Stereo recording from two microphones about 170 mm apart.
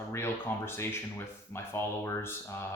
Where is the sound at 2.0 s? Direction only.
15° left (ahead or behind).